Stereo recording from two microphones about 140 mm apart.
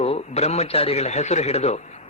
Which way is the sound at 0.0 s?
50° left (ahead or behind).